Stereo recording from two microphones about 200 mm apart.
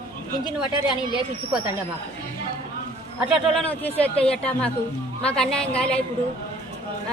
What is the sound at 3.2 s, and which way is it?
Speech, centre (ahead or behind).